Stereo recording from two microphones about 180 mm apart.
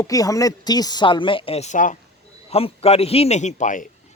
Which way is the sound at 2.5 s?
35° left (ahead or behind).